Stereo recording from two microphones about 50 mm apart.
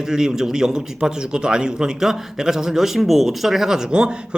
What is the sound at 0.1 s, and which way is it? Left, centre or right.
A man's voice, centre.